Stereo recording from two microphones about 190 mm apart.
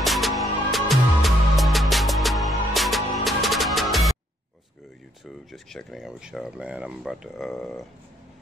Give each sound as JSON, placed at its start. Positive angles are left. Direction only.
{"t": 0.0, "sound": "music", "side_deg": 0}
{"t": 5.2, "sound": "speech", "side_deg": 0}